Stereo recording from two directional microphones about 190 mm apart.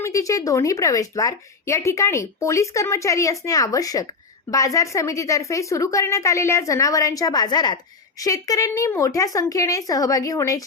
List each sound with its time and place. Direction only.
0.0 s a woman's voice: 15° left (ahead or behind)